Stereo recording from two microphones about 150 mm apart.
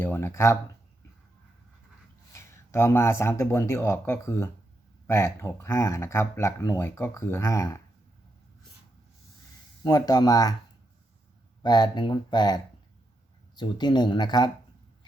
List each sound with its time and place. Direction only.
0.0 s a sound: 15° left (ahead or behind)
2.3 s speech: 20° left (ahead or behind)
9.8 s speech: 25° left (ahead or behind)
11.6 s speech: 30° left (ahead or behind)
13.6 s speech: 30° left (ahead or behind)